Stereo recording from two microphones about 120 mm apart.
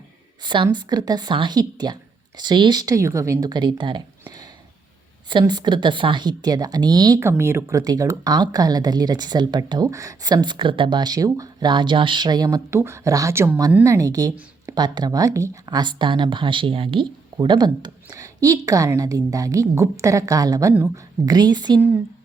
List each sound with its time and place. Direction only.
0.4 s speech: 40° right (ahead or behind)
5.3 s speech: 40° right (ahead or behind)
7.2 s a woman's voice: 20° right (ahead or behind)